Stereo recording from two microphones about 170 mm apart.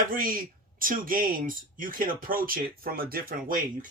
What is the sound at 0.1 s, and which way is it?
Speech, 55° right (ahead or behind).